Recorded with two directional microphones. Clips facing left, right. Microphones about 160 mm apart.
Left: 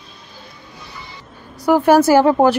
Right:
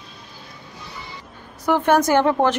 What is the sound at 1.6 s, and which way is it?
Speech, 10° left (ahead or behind).